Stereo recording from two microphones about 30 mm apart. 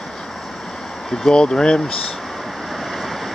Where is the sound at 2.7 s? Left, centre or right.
Centre.